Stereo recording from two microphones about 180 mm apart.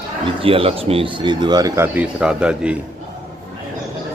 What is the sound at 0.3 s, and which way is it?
Speech, 30° right (ahead or behind).